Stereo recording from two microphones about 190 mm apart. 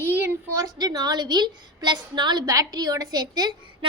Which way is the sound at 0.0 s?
10° right (ahead or behind).